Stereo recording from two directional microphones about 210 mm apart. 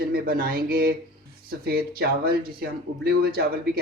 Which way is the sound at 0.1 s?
45° right (ahead or behind).